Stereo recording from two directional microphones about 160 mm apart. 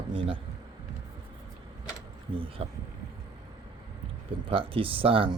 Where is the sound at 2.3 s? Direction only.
35° right (ahead or behind).